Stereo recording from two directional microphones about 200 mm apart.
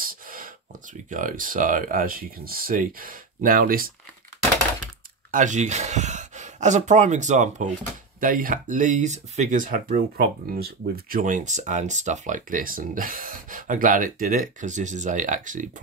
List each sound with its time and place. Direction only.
0.0 s a sound: 45° right (ahead or behind)
1.1 s speech: 40° right (ahead or behind)
5.3 s speech: 40° right (ahead or behind)